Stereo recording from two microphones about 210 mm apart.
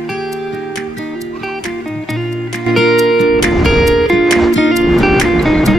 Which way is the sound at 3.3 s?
Centre (ahead or behind).